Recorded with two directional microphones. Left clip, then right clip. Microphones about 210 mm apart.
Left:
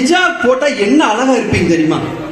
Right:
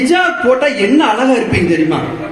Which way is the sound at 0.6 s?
25° left (ahead or behind).